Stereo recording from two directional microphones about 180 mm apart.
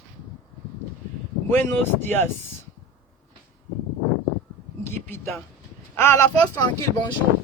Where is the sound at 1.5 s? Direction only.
10° left (ahead or behind).